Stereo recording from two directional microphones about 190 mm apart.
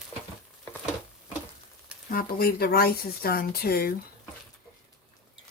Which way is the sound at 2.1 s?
50° left (ahead or behind).